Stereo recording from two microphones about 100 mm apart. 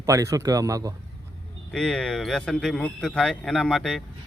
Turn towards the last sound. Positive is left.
turn(degrees=5)  # may be behind; listen again after turning